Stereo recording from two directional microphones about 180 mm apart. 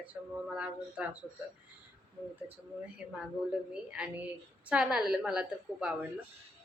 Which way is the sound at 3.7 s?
5° right (ahead or behind).